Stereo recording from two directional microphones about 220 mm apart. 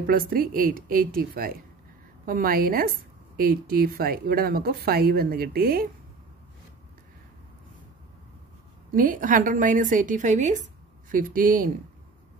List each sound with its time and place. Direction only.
0.0 s a woman's voice: 40° right (ahead or behind)
8.9 s a woman's voice: 40° right (ahead or behind)